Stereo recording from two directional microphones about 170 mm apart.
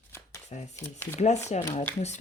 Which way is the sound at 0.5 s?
40° left (ahead or behind).